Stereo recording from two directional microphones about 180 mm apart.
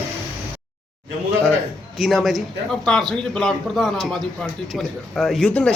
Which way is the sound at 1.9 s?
Centre (ahead or behind).